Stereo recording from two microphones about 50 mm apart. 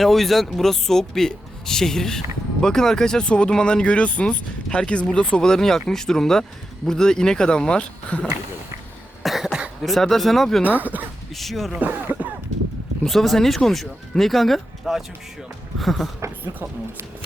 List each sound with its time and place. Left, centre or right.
0.0 s speech: centre
9.2 s cough: centre
9.8 s speech: centre
10.6 s speech: right
11.3 s speech: centre
12.1 s a sound: right
13.1 s speech: centre